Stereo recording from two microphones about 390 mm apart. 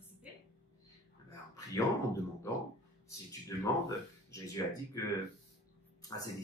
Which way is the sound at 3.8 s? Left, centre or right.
Centre.